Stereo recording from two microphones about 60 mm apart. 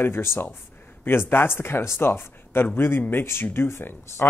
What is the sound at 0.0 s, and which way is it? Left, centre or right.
Speech, left.